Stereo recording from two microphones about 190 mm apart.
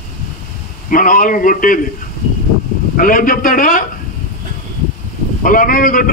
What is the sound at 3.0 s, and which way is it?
Speech, 45° left (ahead or behind).